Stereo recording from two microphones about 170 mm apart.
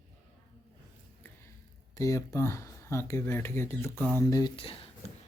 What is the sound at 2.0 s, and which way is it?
Speech, 20° left (ahead or behind).